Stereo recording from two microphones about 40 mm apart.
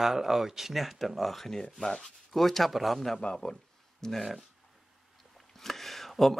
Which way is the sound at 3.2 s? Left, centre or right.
Left.